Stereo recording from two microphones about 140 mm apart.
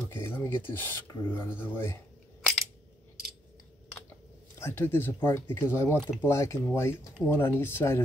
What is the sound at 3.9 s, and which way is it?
Speech, 20° left (ahead or behind).